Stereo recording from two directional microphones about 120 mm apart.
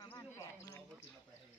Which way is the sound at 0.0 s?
30° left (ahead or behind).